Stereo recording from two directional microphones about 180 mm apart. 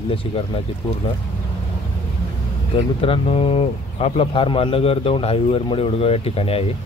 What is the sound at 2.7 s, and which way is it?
Speech, 30° left (ahead or behind).